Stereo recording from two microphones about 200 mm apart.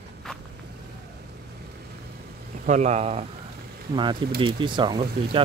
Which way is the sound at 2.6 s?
35° right (ahead or behind).